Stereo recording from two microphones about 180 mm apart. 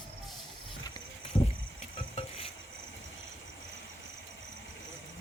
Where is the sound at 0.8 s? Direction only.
25° left (ahead or behind).